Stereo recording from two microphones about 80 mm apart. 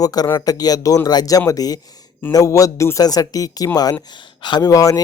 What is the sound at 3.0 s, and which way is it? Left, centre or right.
Speech, left.